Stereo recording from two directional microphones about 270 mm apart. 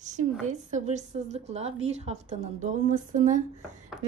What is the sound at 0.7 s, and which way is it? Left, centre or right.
A woman's voice, right.